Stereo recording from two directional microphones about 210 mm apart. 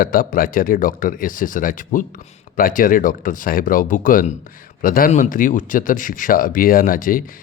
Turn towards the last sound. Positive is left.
turn(degrees=40)  # may be behind; listen again after turning